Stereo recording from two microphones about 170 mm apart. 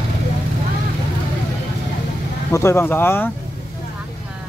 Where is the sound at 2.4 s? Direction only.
15° left (ahead or behind).